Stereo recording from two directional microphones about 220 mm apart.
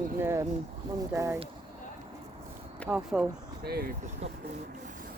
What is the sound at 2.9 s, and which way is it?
Speech, centre (ahead or behind).